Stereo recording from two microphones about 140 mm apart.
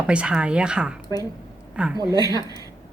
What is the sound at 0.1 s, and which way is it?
Speech, 5° right (ahead or behind).